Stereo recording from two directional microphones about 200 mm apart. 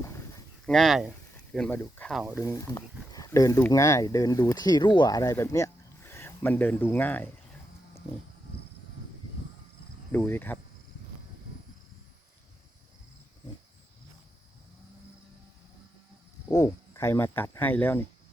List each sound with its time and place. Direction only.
0.0 s a sound: 15° left (ahead or behind)
0.6 s speech: centre (ahead or behind)
2.3 s speech: 15° left (ahead or behind)
10.1 s speech: 10° left (ahead or behind)
16.5 s speech: 15° left (ahead or behind)